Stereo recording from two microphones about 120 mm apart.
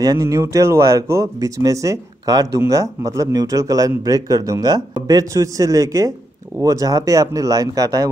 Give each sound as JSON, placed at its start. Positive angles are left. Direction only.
{"t": 0.0, "sound": "speech", "side_deg": -30}